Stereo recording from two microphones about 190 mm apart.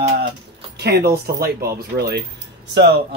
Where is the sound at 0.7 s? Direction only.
60° right (ahead or behind).